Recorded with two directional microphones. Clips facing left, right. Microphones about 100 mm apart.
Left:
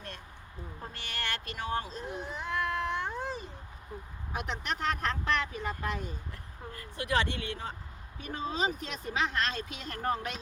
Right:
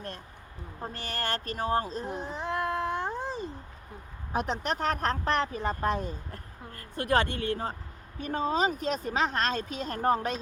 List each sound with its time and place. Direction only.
0.8 s speech: 40° right (ahead or behind)